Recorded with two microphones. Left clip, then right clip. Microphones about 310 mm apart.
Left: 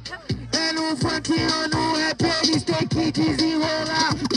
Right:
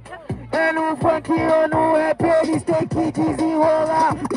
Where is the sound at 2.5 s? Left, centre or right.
Centre.